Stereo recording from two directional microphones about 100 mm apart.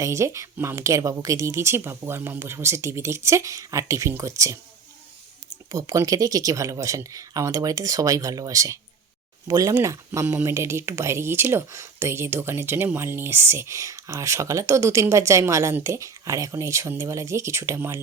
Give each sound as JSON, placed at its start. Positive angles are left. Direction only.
{"t": 0.0, "sound": "speech", "side_deg": -30}
{"t": 5.7, "sound": "speech", "side_deg": -35}
{"t": 10.1, "sound": "speech", "side_deg": -20}